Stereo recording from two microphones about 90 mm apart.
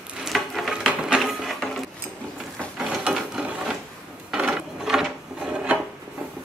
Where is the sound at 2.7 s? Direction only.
Centre (ahead or behind).